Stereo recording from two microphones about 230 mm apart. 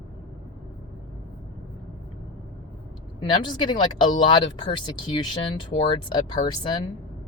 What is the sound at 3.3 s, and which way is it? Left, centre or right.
Speech, centre.